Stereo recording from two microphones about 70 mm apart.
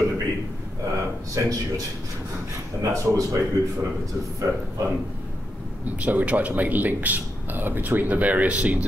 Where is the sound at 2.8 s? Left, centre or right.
Right.